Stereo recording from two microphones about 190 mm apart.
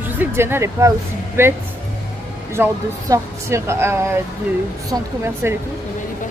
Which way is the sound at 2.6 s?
10° right (ahead or behind).